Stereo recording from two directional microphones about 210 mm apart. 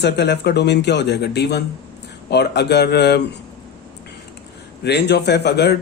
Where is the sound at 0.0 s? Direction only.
55° left (ahead or behind).